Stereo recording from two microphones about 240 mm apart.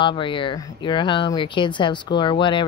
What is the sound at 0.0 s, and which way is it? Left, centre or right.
Speech, centre.